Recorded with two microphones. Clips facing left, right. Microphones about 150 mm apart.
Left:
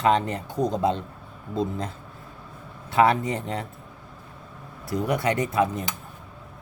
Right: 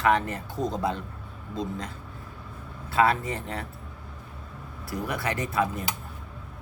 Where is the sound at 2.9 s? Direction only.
20° left (ahead or behind).